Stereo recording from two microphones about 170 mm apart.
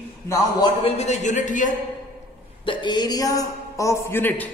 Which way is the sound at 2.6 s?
30° left (ahead or behind).